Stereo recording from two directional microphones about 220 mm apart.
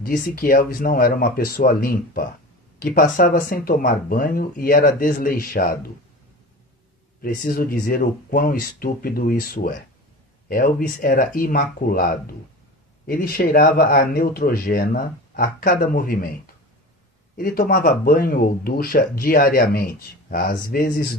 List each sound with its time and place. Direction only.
0.0 s speech: 40° left (ahead or behind)
7.2 s speech: 40° left (ahead or behind)
17.4 s speech: 40° left (ahead or behind)